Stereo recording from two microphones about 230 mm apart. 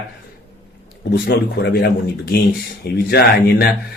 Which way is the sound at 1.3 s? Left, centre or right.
Left.